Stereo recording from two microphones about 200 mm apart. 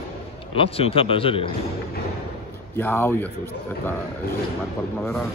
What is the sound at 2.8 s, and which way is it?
Speech, 10° left (ahead or behind).